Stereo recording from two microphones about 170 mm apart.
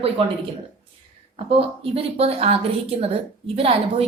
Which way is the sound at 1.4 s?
35° right (ahead or behind).